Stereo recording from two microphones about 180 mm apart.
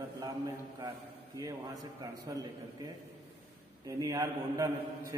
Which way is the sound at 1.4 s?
20° right (ahead or behind).